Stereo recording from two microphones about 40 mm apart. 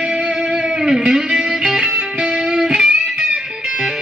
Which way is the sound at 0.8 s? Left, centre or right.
Centre.